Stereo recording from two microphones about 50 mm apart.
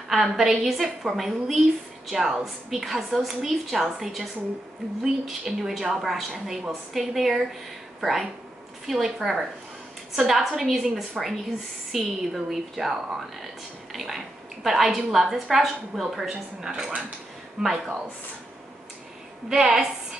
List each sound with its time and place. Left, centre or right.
0.1 s a woman's voice: centre
19.5 s a woman's voice: centre